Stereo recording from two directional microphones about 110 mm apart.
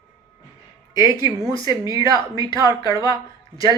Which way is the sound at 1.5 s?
40° left (ahead or behind).